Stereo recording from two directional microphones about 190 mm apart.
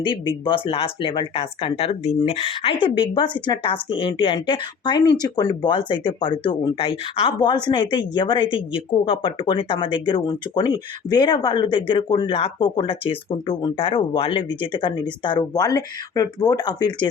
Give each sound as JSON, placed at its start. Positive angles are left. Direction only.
{"t": 0.0, "sound": "speech", "side_deg": 25}